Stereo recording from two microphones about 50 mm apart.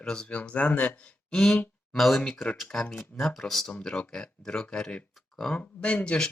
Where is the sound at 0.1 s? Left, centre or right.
Left.